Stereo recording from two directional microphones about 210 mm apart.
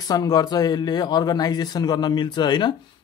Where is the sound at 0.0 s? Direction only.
15° left (ahead or behind).